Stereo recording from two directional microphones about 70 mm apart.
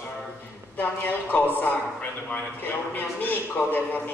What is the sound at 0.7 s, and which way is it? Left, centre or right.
A man's voice, left.